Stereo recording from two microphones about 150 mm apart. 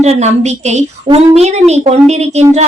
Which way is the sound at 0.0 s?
50° right (ahead or behind).